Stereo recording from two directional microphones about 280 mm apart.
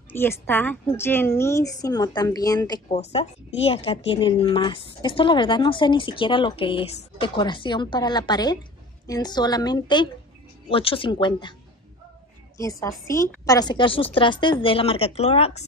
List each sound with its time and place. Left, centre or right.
0.1 s a woman's voice: centre
12.5 s a woman's voice: centre